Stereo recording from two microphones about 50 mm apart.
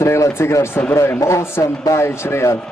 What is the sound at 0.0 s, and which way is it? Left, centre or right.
Speech, left.